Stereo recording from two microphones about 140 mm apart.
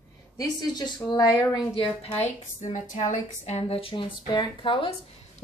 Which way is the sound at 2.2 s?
60° left (ahead or behind).